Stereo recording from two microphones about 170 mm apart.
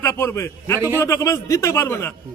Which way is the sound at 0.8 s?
15° right (ahead or behind).